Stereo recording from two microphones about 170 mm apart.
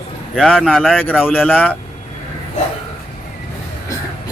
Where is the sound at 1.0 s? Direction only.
10° left (ahead or behind).